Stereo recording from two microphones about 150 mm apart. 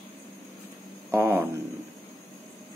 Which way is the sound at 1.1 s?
15° right (ahead or behind).